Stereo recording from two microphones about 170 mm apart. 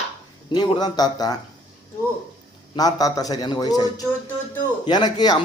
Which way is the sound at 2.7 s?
20° left (ahead or behind).